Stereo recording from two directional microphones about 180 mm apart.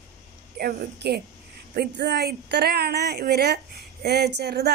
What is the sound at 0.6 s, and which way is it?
A woman's voice, 60° right (ahead or behind).